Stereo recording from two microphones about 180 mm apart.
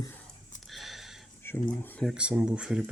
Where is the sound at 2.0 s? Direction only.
5° right (ahead or behind).